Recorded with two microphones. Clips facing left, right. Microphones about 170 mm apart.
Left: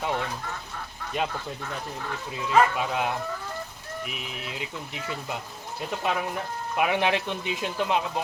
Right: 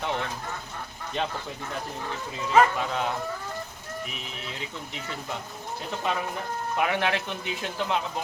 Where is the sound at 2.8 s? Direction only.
15° left (ahead or behind).